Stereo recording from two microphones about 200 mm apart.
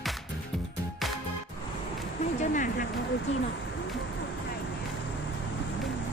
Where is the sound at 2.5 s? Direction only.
40° left (ahead or behind).